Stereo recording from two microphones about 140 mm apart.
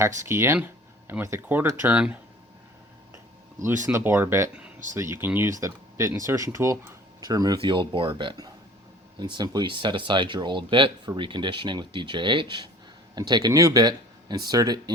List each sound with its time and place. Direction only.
0.2 s speech: 20° right (ahead or behind)
3.9 s speech: 15° right (ahead or behind)
7.6 s speech: 35° right (ahead or behind)